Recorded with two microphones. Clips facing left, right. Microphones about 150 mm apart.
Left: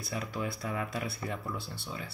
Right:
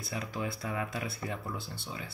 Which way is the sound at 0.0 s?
25° right (ahead or behind).